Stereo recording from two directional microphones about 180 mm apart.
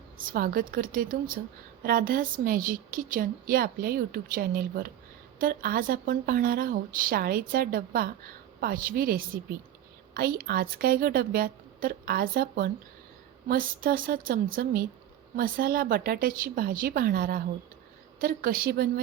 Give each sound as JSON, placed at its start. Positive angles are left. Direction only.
{"t": 0.2, "sound": "a woman's voice", "side_deg": -50}